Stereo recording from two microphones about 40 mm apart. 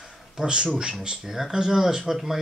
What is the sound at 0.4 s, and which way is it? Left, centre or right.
Speech, right.